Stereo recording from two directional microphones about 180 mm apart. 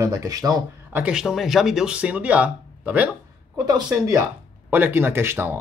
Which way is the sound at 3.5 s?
20° right (ahead or behind).